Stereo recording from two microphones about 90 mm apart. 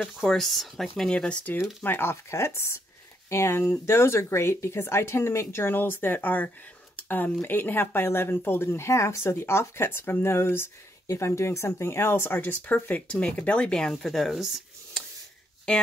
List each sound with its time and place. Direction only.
0.2 s speech: 5° left (ahead or behind)
15.7 s speech: 10° left (ahead or behind)